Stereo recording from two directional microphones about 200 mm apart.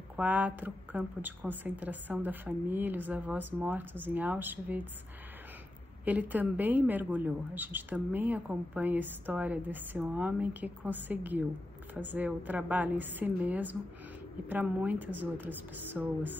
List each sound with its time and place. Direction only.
0.1 s a woman's voice: 10° right (ahead or behind)
6.0 s a woman's voice: 10° right (ahead or behind)